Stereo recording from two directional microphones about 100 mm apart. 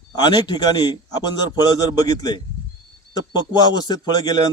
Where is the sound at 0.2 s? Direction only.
50° left (ahead or behind).